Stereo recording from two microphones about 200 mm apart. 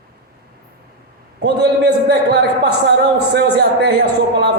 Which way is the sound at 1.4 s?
55° right (ahead or behind).